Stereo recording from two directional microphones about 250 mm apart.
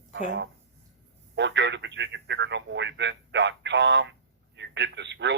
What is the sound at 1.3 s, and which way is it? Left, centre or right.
Speech, right.